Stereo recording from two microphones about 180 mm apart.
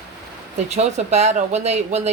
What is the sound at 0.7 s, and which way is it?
Speech, 40° right (ahead or behind).